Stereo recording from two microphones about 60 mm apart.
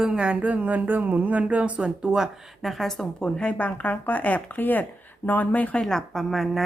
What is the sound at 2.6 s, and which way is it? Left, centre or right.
A woman's voice, centre.